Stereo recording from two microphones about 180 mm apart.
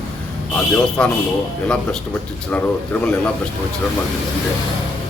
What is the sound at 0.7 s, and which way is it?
A man's voice, 5° left (ahead or behind).